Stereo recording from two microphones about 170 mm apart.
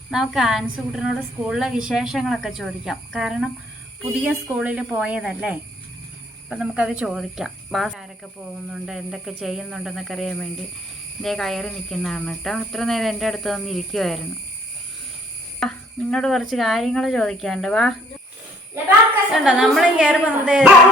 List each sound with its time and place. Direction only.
0.1 s a woman's voice: centre (ahead or behind)
15.6 s a woman's voice: 5° left (ahead or behind)
19.3 s a woman's voice: 5° right (ahead or behind)